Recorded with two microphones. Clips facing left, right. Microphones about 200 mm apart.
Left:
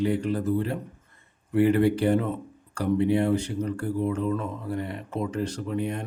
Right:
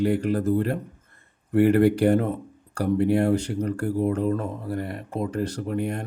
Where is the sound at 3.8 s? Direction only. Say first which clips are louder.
Right 4 dB; 45° right (ahead or behind).